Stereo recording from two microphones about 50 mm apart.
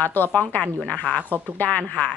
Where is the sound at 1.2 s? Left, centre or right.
Right.